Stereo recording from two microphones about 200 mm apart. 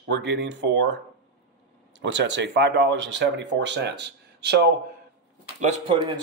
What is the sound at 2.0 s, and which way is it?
Speech, 60° right (ahead or behind).